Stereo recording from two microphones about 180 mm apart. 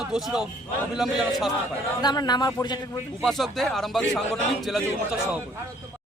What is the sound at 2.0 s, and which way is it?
Speech, 25° left (ahead or behind).